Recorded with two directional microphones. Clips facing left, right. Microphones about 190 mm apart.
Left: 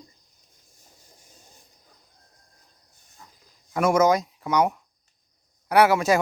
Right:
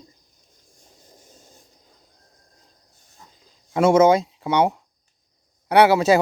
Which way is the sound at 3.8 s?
25° right (ahead or behind).